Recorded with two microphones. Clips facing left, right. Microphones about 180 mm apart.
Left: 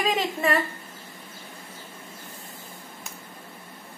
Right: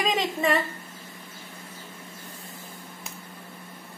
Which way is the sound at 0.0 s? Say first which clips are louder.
Even; centre (ahead or behind).